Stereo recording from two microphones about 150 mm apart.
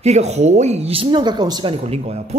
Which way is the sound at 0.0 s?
45° right (ahead or behind).